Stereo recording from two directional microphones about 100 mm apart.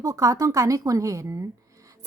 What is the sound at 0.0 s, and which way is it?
A woman's voice, 35° right (ahead or behind).